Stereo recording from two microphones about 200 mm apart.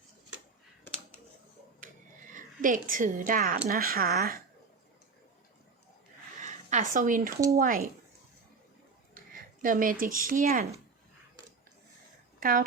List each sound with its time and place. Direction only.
2.3 s a woman's voice: 40° right (ahead or behind)
6.4 s a sound: 35° right (ahead or behind)
7.5 s speech: 45° right (ahead or behind)
9.1 s a sound: 45° right (ahead or behind)
10.2 s speech: 45° right (ahead or behind)
12.4 s speech: 45° right (ahead or behind)